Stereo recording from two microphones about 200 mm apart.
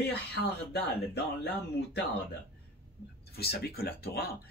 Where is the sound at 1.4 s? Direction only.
55° left (ahead or behind).